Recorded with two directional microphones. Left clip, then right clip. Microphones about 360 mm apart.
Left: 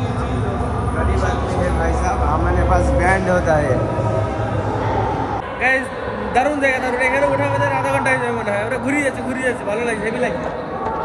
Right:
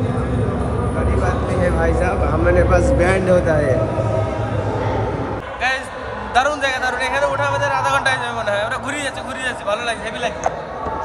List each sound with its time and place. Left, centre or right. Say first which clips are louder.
2.0 s vehicle: right 1 dB; centre
3.3 s speech: right 1 dB; left
6.3 s a man's voice: even; centre
7.4 s a sound: even; centre
9.7 s a man's voice: left 1 dB; centre